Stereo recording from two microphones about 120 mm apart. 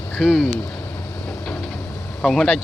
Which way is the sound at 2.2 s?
Centre (ahead or behind).